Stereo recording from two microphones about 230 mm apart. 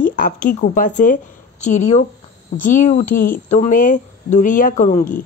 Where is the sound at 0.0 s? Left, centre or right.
Left.